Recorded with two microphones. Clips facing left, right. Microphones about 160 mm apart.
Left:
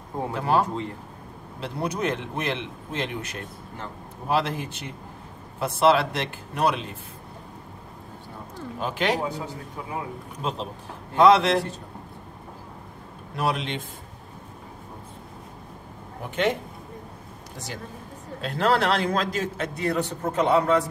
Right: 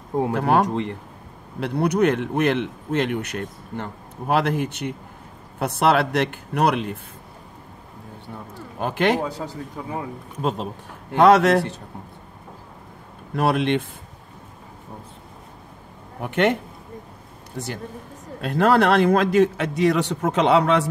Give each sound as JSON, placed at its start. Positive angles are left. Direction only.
{"t": 0.3, "sound": "a man's voice", "side_deg": -60}
{"t": 8.7, "sound": "speech", "side_deg": -55}
{"t": 11.1, "sound": "a man's voice", "side_deg": -65}
{"t": 13.4, "sound": "a man's voice", "side_deg": -60}
{"t": 16.2, "sound": "a man's voice", "side_deg": -65}
{"t": 18.4, "sound": "a man's voice", "side_deg": -55}